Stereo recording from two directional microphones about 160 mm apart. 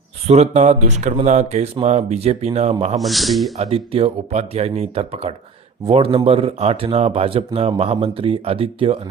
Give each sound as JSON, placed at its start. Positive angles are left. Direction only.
{"t": 0.3, "sound": "speech", "side_deg": -45}
{"t": 3.0, "sound": "speech", "side_deg": 0}
{"t": 3.6, "sound": "speech", "side_deg": -35}